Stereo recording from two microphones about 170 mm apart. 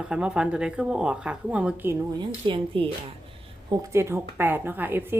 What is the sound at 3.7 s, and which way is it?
Speech, 20° right (ahead or behind).